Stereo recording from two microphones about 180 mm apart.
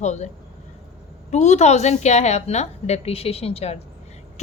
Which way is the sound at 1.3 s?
40° left (ahead or behind).